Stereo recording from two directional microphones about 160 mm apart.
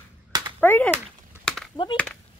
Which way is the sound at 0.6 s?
10° left (ahead or behind).